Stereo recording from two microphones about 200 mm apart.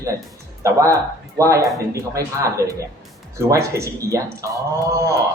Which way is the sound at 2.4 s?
15° right (ahead or behind).